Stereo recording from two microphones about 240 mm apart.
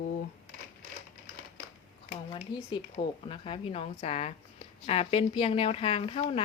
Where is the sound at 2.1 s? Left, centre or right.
Left.